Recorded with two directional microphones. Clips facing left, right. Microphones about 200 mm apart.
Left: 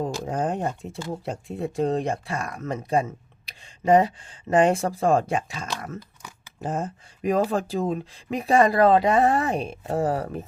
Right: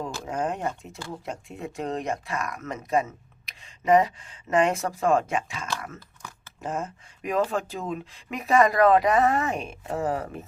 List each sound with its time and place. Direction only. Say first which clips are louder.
0.3 s speech: right 1 dB; 35° left (ahead or behind)
6.0 s crumpling: left 2 dB; 15° left (ahead or behind)
6.6 s speech: left 3 dB; 35° left (ahead or behind)